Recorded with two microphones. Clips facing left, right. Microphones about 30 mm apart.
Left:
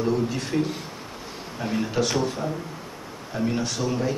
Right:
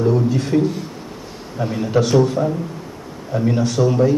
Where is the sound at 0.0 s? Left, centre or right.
Centre.